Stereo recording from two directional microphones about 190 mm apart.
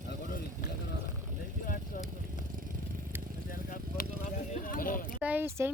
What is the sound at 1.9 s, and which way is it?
Vehicle, 45° left (ahead or behind).